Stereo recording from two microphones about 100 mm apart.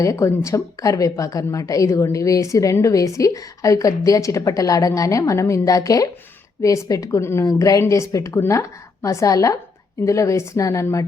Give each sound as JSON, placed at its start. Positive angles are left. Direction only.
{"t": 0.0, "sound": "a woman's voice", "side_deg": 30}